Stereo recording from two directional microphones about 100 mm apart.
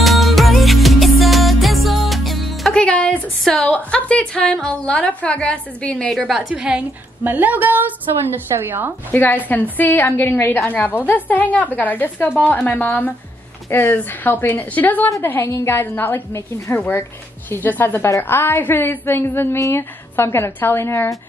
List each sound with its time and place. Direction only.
0.0 s music: centre (ahead or behind)
3.7 s a woman's voice: 10° left (ahead or behind); by 8.9 s 20° right (ahead or behind)
9.1 s a woman's voice: 20° left (ahead or behind)